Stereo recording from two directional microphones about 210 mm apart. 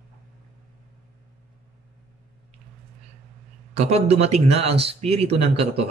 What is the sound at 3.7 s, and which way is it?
Speech, 30° right (ahead or behind).